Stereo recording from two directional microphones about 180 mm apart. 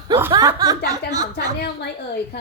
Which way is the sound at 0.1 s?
15° right (ahead or behind).